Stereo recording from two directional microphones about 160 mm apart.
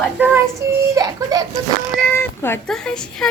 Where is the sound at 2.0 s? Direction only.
15° left (ahead or behind).